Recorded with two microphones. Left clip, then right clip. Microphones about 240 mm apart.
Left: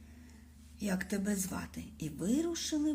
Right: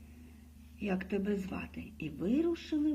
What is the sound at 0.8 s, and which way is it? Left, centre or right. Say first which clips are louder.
Speech: right 1 dB; left.